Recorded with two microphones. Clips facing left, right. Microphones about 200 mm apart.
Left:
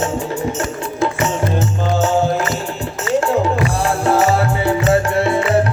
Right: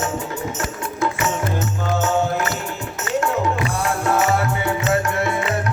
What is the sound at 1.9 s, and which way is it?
Music, 30° left (ahead or behind).